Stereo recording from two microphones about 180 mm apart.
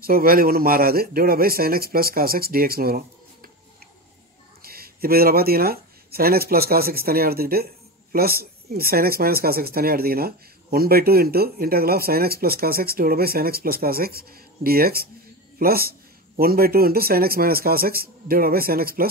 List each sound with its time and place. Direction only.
0.0 s speech: 55° right (ahead or behind)
4.6 s speech: 55° right (ahead or behind)